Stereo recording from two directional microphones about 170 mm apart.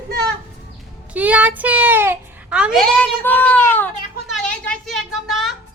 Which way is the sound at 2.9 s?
5° left (ahead or behind).